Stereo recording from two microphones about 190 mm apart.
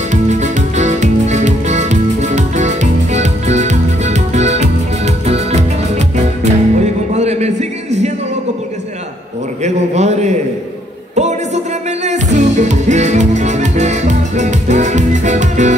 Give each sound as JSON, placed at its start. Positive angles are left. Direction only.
{"t": 0.1, "sound": "music", "side_deg": -40}
{"t": 9.6, "sound": "a sound", "side_deg": -35}
{"t": 11.1, "sound": "music", "side_deg": -35}